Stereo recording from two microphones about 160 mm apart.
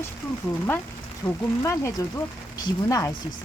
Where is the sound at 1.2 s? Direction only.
25° left (ahead or behind).